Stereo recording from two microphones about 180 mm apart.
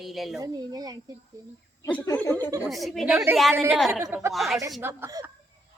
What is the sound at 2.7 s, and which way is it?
A woman's voice, centre (ahead or behind).